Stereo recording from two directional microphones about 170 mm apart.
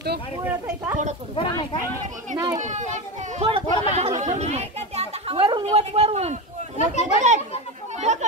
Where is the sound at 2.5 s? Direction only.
45° right (ahead or behind).